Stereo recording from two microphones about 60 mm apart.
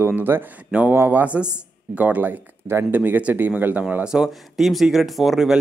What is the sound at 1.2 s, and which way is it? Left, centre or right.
Speech, right.